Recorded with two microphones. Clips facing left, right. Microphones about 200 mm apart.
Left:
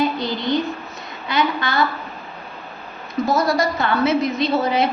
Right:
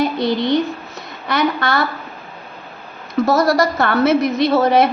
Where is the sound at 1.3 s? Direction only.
65° right (ahead or behind).